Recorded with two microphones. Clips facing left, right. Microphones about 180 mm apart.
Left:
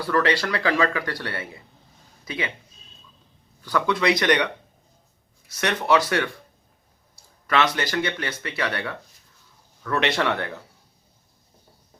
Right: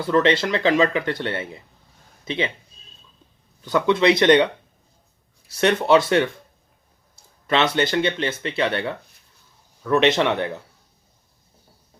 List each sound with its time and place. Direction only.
0.0 s speech: 20° right (ahead or behind)
3.6 s speech: 20° right (ahead or behind)
5.5 s speech: 25° right (ahead or behind)
7.4 s speech: 25° right (ahead or behind)